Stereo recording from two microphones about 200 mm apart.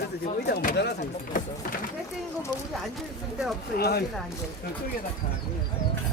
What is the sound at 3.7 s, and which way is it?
Speech, 50° left (ahead or behind).